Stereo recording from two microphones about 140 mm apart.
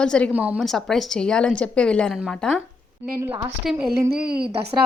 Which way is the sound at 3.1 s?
15° right (ahead or behind).